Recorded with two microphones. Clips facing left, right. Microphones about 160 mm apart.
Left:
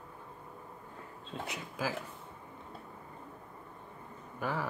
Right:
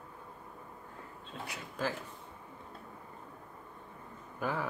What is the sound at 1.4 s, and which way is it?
Speech, 20° left (ahead or behind).